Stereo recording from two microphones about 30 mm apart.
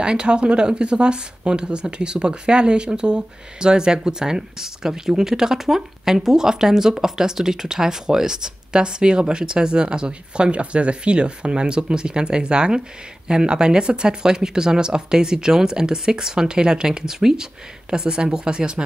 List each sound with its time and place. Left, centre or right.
0.0 s speech: right
17.8 s speech: right